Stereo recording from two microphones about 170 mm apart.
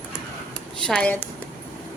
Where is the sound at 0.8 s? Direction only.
10° left (ahead or behind).